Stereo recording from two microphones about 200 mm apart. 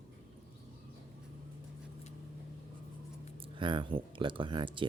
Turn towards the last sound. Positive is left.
turn(degrees=-25)  # may be behind; listen again after turning